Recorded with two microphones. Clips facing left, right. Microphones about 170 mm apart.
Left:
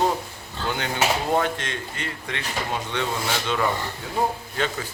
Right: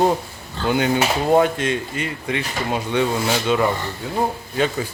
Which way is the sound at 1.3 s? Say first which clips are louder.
Right 7 dB; 10° right (ahead or behind).